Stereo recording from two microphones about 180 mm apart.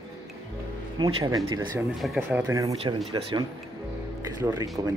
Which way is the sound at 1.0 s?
20° right (ahead or behind).